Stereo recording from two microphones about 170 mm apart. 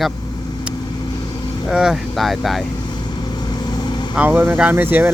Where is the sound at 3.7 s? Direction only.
25° left (ahead or behind).